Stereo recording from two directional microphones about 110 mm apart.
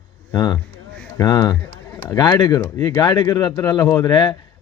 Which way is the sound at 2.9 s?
40° left (ahead or behind).